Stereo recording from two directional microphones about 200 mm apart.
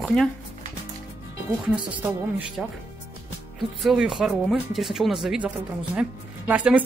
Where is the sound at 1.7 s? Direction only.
5° right (ahead or behind).